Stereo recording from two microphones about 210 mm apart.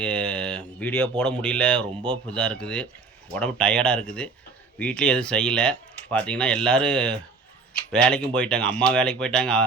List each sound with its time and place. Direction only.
0.0 s speech: 5° left (ahead or behind)